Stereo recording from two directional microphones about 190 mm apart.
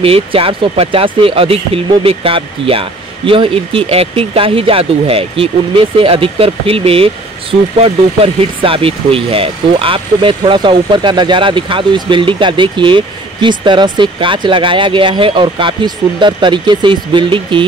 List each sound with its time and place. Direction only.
0.0 s speech: 30° right (ahead or behind)
8.6 s speech: 30° right (ahead or behind)